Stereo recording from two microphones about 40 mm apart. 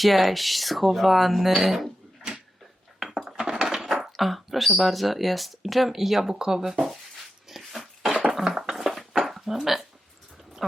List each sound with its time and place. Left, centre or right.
0.0 s speech: centre
3.0 s dishes: centre
3.3 s a sound: centre
3.6 s dishes: centre
4.8 s speech: centre
7.4 s dog: centre
8.5 s a sound: centre